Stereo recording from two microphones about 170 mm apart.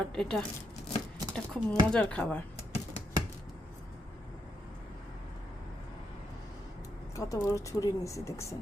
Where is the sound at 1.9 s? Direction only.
5° left (ahead or behind).